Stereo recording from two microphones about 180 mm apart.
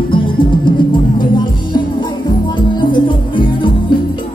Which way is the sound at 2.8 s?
25° left (ahead or behind).